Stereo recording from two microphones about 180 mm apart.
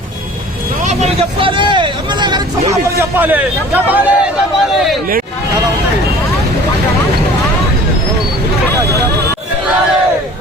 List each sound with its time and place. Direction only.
0.9 s vehicle: 35° right (ahead or behind)
3.2 s speech: 10° right (ahead or behind)